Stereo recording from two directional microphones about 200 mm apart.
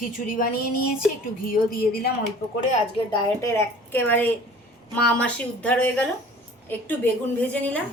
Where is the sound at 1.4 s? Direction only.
45° left (ahead or behind).